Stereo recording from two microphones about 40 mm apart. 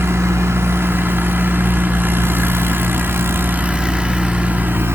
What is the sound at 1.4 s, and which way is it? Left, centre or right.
Vehicle, right.